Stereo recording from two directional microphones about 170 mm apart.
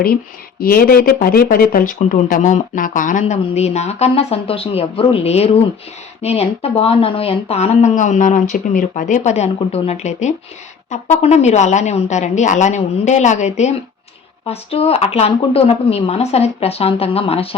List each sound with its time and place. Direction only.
0.6 s speech: 60° left (ahead or behind); by 17.5 s 35° left (ahead or behind)